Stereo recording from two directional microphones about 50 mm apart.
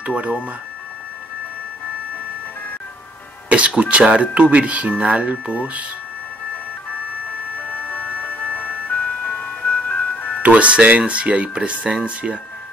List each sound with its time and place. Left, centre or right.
0.0 s speech: right
3.4 s speech: right
7.5 s music: left
10.4 s speech: right